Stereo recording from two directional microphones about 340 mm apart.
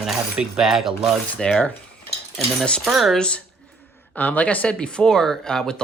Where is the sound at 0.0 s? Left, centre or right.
Centre.